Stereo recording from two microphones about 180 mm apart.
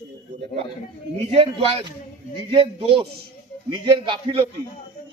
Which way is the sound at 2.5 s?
30° right (ahead or behind).